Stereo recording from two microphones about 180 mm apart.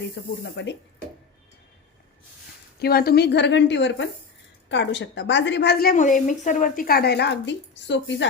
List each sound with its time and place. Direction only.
0.2 s a woman's voice: 70° left (ahead or behind)
2.7 s a woman's voice: 60° left (ahead or behind); by 8.3 s 80° left